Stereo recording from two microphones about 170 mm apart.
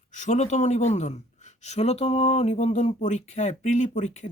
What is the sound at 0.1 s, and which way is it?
Speech, 45° left (ahead or behind).